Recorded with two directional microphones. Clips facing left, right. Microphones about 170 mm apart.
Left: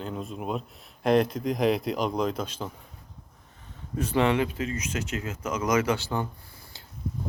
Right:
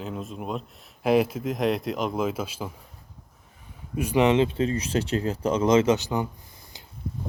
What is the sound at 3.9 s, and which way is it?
Speech, 15° right (ahead or behind).